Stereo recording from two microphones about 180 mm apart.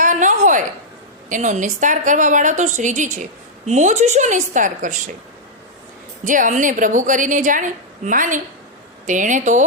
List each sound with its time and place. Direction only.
0.0 s a sound: 45° right (ahead or behind)
1.3 s a woman's voice: 45° right (ahead or behind)
6.2 s a woman's voice: 45° right (ahead or behind)